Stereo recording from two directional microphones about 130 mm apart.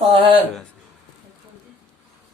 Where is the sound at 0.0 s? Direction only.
45° right (ahead or behind).